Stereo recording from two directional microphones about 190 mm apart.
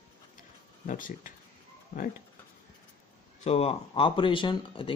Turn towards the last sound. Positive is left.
turn(degrees=25)  # may be behind; listen again after turning